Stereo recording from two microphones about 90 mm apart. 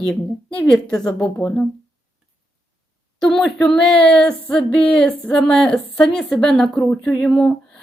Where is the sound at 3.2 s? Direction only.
5° left (ahead or behind).